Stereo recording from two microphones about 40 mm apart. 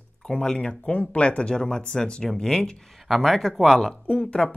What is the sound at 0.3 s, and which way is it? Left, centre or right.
Speech, centre.